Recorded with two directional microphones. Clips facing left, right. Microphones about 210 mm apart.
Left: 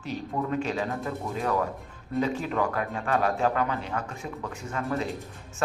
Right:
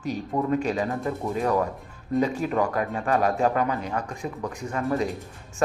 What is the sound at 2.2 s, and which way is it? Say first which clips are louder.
Speech: right 1 dB; 40° right (ahead or behind).